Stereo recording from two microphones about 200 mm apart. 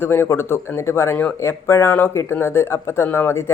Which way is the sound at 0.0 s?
10° left (ahead or behind).